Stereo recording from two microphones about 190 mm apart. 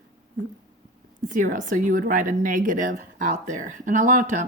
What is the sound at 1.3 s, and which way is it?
A woman's voice, 45° right (ahead or behind).